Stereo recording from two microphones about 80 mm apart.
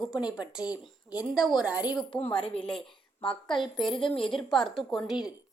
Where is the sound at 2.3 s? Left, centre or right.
Centre.